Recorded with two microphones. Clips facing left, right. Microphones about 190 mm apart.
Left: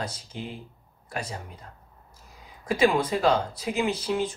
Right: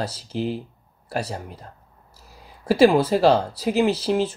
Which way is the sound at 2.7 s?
35° right (ahead or behind).